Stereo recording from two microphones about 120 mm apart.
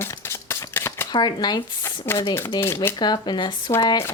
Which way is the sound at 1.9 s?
20° left (ahead or behind).